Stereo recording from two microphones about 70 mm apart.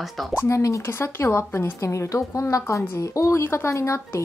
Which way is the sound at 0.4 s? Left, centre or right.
Left.